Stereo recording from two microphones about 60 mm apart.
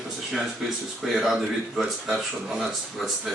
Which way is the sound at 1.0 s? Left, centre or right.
Centre.